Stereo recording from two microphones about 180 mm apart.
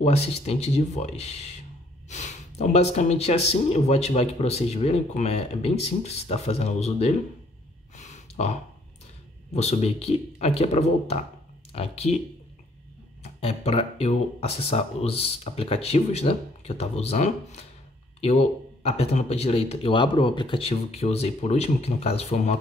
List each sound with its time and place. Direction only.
0.0 s speech: 35° left (ahead or behind)
7.9 s a sound: 40° left (ahead or behind)
9.5 s speech: 35° left (ahead or behind)
13.2 s speech: 35° left (ahead or behind)